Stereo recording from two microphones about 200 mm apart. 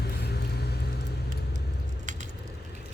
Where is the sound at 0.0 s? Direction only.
55° left (ahead or behind).